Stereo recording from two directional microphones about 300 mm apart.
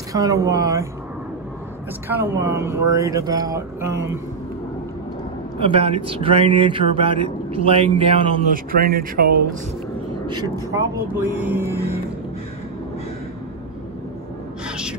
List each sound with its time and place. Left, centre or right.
0.1 s speech: centre
2.0 s speech: centre
5.6 s speech: centre
8.7 s speech: right
10.2 s speech: centre